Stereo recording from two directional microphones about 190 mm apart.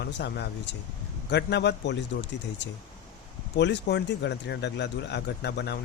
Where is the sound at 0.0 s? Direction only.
60° left (ahead or behind).